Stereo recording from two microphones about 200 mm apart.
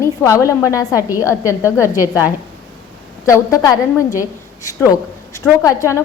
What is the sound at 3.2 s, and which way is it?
A woman's voice, 15° left (ahead or behind).